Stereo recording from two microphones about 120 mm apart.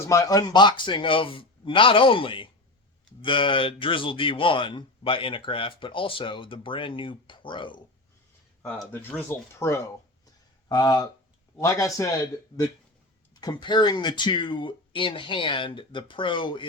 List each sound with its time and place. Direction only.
0.1 s speech: 30° left (ahead or behind)
8.9 s speech: 20° left (ahead or behind)
10.7 s speech: 35° left (ahead or behind)
13.4 s speech: 40° left (ahead or behind)